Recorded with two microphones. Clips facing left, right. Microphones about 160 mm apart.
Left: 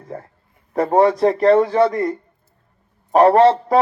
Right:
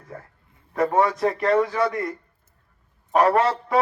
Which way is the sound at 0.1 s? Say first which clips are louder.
Left 7 dB; 30° left (ahead or behind).